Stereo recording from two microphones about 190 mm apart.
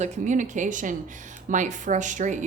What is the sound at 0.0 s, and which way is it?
A woman's voice, 40° right (ahead or behind).